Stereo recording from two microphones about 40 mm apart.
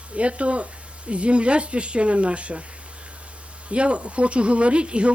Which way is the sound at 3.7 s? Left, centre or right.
Right.